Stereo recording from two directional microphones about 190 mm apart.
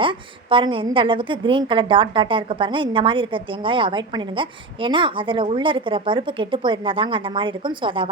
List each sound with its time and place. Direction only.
0.0 s a woman's voice: 25° right (ahead or behind)